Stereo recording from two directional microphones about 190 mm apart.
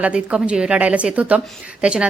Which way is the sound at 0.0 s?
5° right (ahead or behind).